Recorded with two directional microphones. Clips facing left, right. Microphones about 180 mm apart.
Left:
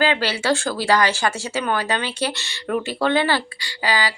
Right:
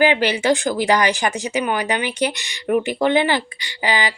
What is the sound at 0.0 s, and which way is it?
Speech, 15° right (ahead or behind).